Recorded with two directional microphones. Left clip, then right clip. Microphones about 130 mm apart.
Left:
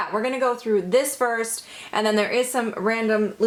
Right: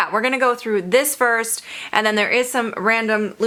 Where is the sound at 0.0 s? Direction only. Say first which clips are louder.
Right 5 dB; 35° right (ahead or behind).